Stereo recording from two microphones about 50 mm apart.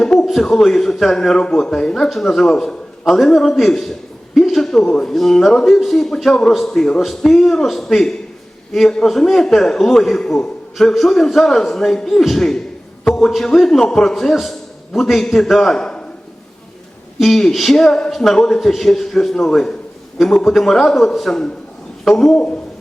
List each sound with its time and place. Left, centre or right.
0.8 s a man's voice: centre
10.8 s a man's voice: centre
17.2 s a man's voice: centre
22.4 s a man's voice: left